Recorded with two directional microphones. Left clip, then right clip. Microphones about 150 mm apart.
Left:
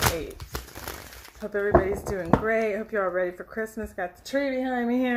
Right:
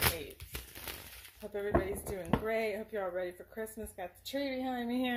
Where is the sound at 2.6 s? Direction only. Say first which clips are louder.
Left 10 dB; 15° right (ahead or behind).